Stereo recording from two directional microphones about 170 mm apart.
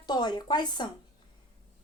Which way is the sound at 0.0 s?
25° left (ahead or behind).